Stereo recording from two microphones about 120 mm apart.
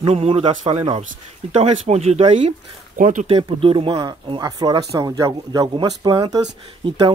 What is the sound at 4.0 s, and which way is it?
Speech, 35° right (ahead or behind).